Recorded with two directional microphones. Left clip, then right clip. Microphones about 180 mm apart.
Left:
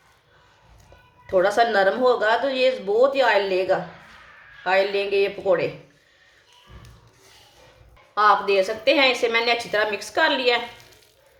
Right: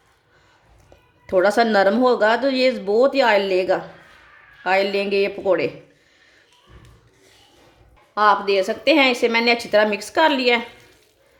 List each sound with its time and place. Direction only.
1.3 s a woman's voice: 50° right (ahead or behind)
8.1 s a woman's voice: 45° right (ahead or behind)